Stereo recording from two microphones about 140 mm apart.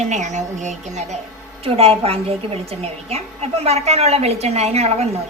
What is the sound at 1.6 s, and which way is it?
A woman's voice, 45° right (ahead or behind).